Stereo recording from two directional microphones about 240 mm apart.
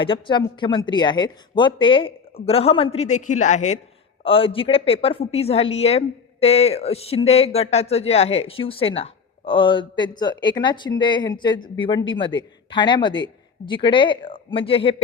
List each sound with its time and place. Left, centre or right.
0.0 s a woman's voice: left